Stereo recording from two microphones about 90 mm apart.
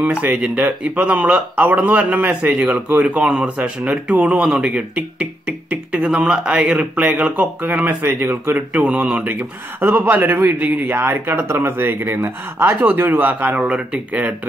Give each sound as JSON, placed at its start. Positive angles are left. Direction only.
{"t": 0.0, "sound": "speech", "side_deg": -15}